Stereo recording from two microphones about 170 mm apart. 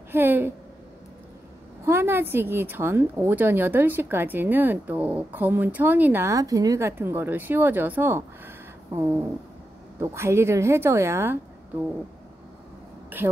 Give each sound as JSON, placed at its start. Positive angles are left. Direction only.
{"t": 0.1, "sound": "a woman's voice", "side_deg": -10}
{"t": 1.9, "sound": "a woman's voice", "side_deg": -15}
{"t": 13.2, "sound": "a woman's voice", "side_deg": -15}